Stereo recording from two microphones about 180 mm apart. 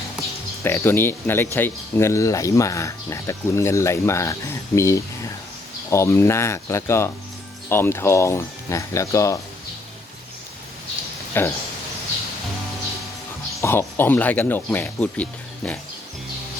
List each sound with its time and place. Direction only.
0.6 s speech: 10° left (ahead or behind)
11.3 s speech: 10° left (ahead or behind)
13.6 s speech: 15° left (ahead or behind)